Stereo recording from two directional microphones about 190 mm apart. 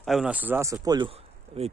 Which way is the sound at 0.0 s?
Centre (ahead or behind).